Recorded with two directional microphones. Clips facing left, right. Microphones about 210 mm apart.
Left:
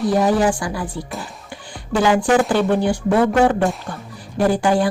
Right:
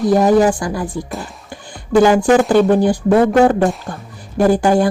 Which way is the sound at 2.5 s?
40° right (ahead or behind).